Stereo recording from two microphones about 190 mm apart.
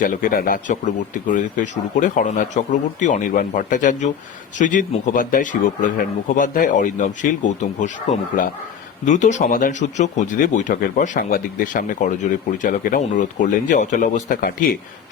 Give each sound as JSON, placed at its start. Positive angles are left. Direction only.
{"t": 0.0, "sound": "speech", "side_deg": 45}
{"t": 9.0, "sound": "speech", "side_deg": 40}